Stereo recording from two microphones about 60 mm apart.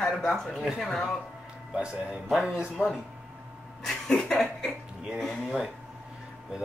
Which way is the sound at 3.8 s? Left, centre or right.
Centre.